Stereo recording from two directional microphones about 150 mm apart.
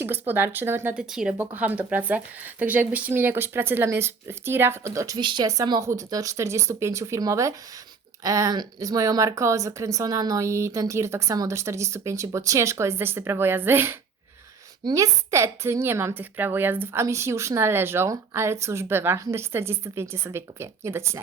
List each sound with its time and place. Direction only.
0.0 s a woman's voice: 15° right (ahead or behind)